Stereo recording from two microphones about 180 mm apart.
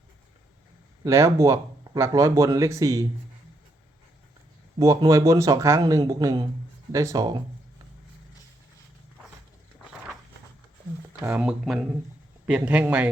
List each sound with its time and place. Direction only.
1.0 s speech: 15° right (ahead or behind)
4.8 s speech: 20° right (ahead or behind)
11.2 s speech: 10° right (ahead or behind)